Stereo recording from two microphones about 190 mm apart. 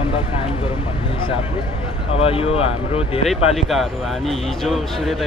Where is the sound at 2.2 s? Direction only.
30° left (ahead or behind).